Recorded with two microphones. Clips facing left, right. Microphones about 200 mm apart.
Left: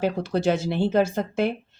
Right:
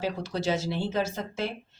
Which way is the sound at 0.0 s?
55° left (ahead or behind).